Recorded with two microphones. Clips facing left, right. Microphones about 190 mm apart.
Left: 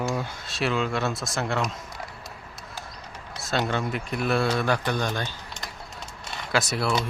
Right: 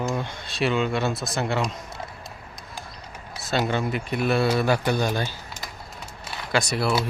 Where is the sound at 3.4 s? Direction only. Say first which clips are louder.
Right 2 dB; centre (ahead or behind).